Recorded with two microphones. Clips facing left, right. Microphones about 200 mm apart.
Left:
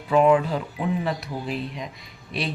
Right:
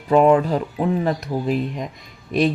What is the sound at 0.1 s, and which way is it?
Speech, 40° right (ahead or behind).